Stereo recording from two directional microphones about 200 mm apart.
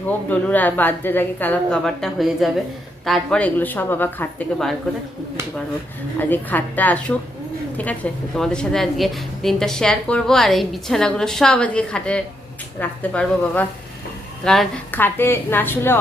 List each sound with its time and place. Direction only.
0.3 s a woman's voice: 10° left (ahead or behind)
6.1 s a woman's voice: 10° left (ahead or behind)